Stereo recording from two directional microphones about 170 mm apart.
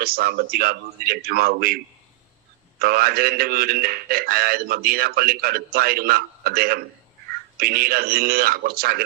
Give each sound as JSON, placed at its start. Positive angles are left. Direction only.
{"t": 0.0, "sound": "a man's voice", "side_deg": -60}